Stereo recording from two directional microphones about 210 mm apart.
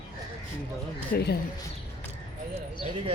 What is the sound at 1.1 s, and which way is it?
Speech, 50° left (ahead or behind).